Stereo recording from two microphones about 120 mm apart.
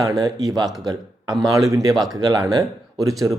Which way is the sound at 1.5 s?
30° right (ahead or behind).